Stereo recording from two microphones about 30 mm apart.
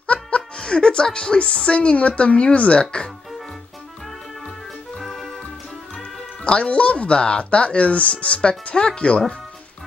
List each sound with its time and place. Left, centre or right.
0.0 s speech: left
4.9 s music: centre
6.4 s speech: left
7.2 s speech: left